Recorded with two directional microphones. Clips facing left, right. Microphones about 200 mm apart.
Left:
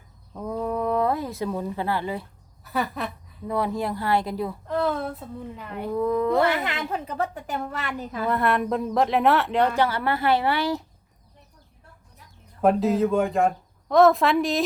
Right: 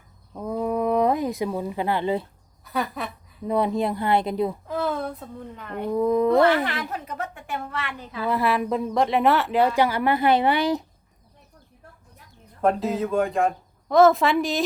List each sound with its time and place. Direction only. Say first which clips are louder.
0.3 s a sound: right 2 dB; 10° right (ahead or behind)
2.6 s a woman's voice: even; centre (ahead or behind)
3.4 s a woman's voice: right 3 dB; 20° right (ahead or behind)
4.6 s speech: left 1 dB; centre (ahead or behind)
5.9 s a woman's voice: right 3 dB; 15° right (ahead or behind)
6.7 s speech: left 1 dB; 25° left (ahead or behind); by 8.3 s 45° left (ahead or behind)
8.3 s a woman's voice: right 1 dB; centre (ahead or behind); by 10.8 s 20° right (ahead or behind)
12.6 s a woman's voice: left 3 dB; centre (ahead or behind)